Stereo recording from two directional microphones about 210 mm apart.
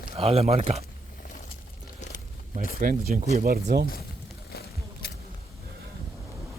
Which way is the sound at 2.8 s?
40° right (ahead or behind).